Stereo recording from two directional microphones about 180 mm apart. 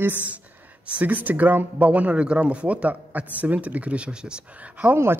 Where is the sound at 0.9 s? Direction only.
10° right (ahead or behind).